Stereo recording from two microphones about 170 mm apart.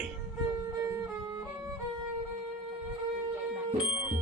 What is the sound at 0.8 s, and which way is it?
Music, 15° right (ahead or behind).